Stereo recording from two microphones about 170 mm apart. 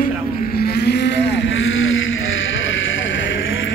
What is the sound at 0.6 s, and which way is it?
Cattle, 70° left (ahead or behind).